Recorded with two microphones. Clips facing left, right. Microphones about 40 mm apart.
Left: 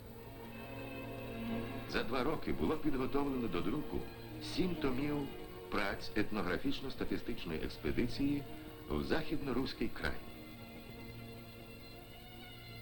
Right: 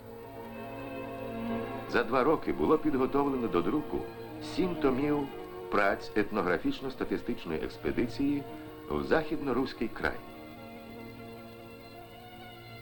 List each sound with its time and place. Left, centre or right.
0.5 s music: centre
2.5 s speech: centre
4.4 s music: centre
4.6 s speech: centre
4.9 s music: right
5.9 s speech: centre